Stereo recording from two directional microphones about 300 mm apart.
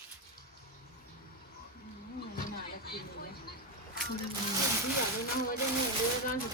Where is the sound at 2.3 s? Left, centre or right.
Left.